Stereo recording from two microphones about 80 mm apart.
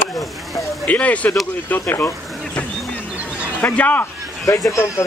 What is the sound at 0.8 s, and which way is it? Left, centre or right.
Speech, centre.